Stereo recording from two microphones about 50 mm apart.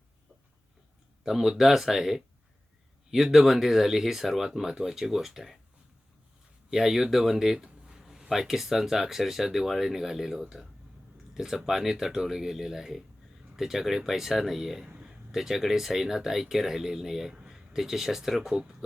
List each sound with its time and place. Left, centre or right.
1.2 s speech: centre
3.3 s speech: centre
6.7 s speech: centre
17.3 s a sound: centre
17.7 s speech: centre